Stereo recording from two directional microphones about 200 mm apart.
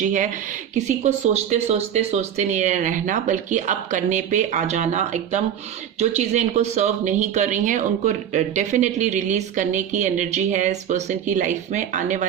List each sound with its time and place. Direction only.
0.0 s speech: 40° right (ahead or behind)